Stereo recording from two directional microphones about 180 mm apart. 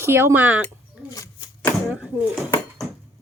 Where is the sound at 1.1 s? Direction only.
15° left (ahead or behind).